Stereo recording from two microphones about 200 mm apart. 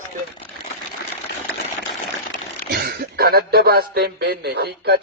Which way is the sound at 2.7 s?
50° right (ahead or behind).